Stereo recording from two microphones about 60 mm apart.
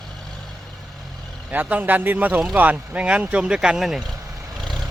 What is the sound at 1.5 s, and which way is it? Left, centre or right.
Speech, right.